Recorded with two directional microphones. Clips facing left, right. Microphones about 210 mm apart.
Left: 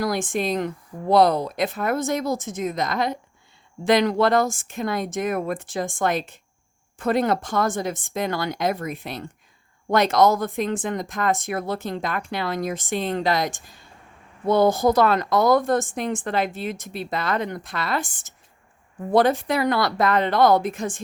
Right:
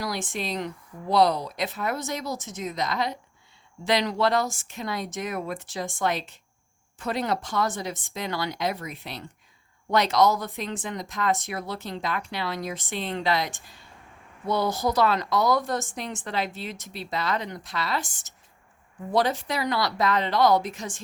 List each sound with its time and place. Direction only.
0.0 s speech: 50° left (ahead or behind)